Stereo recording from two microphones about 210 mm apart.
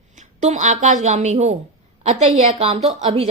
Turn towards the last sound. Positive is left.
turn(degrees=-30)  # may be behind; listen again after turning